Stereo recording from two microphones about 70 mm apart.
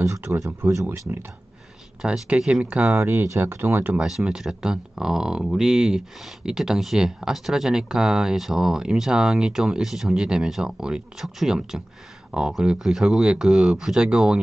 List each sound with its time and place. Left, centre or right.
0.2 s speech: right
2.0 s speech: centre
3.0 s speech: right
4.0 s speech: centre